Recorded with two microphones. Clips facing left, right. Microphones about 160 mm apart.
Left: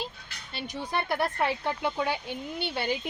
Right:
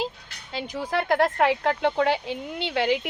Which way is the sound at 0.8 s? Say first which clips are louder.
Right 6 dB; 90° right.